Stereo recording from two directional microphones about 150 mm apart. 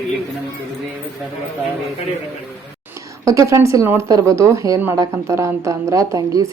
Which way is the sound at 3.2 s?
20° right (ahead or behind).